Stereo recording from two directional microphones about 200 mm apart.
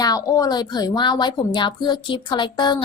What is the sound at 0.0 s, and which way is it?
A woman's voice, 20° left (ahead or behind).